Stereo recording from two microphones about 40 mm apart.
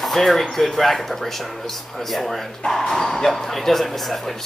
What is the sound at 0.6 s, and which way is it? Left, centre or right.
Speech, centre.